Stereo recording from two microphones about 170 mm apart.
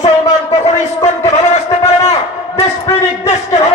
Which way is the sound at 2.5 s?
20° left (ahead or behind).